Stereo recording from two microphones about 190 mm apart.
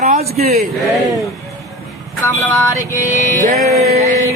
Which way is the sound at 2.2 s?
10° left (ahead or behind).